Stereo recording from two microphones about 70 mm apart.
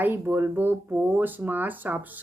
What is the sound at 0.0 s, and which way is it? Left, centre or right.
Speech, right.